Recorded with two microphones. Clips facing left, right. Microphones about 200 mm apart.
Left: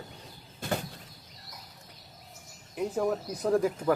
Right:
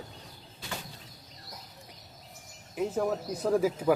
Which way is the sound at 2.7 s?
Centre (ahead or behind).